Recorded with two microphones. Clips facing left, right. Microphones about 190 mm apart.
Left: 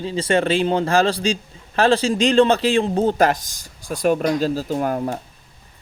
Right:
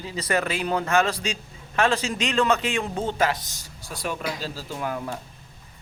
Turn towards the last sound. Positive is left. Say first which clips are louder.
# left 8 dB
turn(degrees=45)  # may be behind; listen again after turning